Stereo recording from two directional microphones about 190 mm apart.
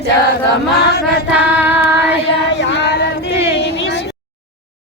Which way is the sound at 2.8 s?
60° left (ahead or behind).